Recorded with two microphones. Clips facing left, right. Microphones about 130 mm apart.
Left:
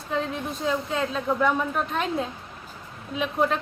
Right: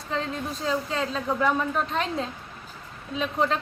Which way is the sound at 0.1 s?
5° left (ahead or behind).